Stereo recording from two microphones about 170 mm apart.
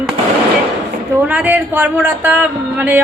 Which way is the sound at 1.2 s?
10° right (ahead or behind).